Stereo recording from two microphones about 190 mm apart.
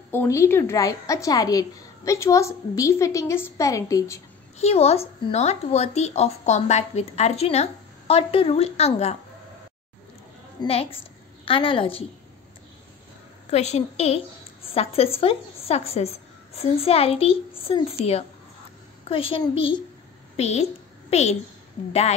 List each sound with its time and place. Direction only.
0.1 s a woman's voice: 15° left (ahead or behind)
4.6 s a woman's voice: 35° left (ahead or behind)
10.6 s a woman's voice: 30° left (ahead or behind)
13.5 s a woman's voice: 35° left (ahead or behind)